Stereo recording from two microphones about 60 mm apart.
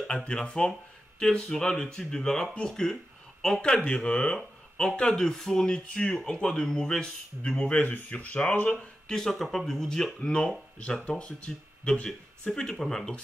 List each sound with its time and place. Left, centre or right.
0.0 s speech: centre
8.7 s speech: centre